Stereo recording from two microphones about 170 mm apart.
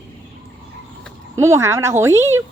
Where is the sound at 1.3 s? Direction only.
15° right (ahead or behind).